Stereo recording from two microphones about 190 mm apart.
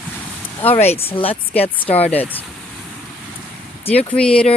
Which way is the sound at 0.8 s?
35° left (ahead or behind).